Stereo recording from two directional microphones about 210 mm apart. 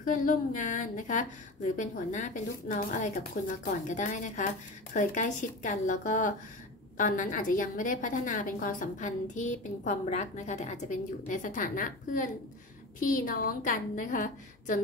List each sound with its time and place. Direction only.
0.0 s a woman's voice: 40° left (ahead or behind)